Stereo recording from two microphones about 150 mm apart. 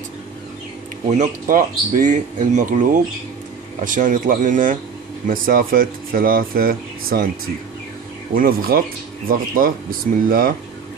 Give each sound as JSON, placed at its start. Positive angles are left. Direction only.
{"t": 1.0, "sound": "speech", "side_deg": -60}
{"t": 8.4, "sound": "speech", "side_deg": -75}